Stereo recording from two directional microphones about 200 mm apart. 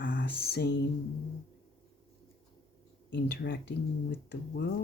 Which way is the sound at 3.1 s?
55° left (ahead or behind).